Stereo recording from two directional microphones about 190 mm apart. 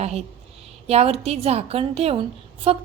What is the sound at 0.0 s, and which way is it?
A woman's voice, 35° right (ahead or behind).